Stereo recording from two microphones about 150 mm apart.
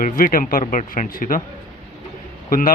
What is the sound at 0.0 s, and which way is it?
Speech, 65° left (ahead or behind).